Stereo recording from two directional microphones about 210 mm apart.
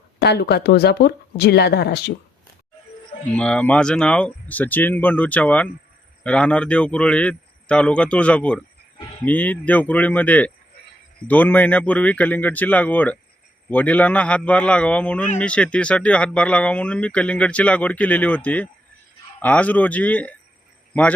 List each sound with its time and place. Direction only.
0.2 s speech: 50° left (ahead or behind)
3.2 s speech: 5° left (ahead or behind)